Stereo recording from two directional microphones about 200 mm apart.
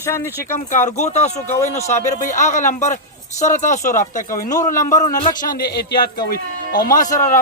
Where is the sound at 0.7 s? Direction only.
35° left (ahead or behind).